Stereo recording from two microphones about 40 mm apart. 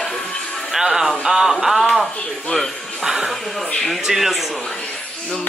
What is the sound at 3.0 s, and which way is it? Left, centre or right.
Speech, centre.